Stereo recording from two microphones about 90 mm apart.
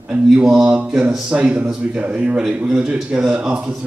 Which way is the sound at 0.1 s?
10° right (ahead or behind).